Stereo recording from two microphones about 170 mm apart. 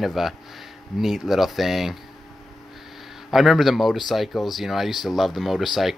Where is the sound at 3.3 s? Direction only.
Centre (ahead or behind).